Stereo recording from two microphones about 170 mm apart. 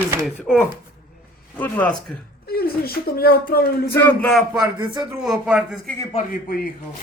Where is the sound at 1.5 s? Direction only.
10° left (ahead or behind).